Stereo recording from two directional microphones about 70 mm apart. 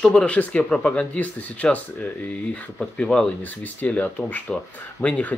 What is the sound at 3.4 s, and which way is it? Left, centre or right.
Speech, left.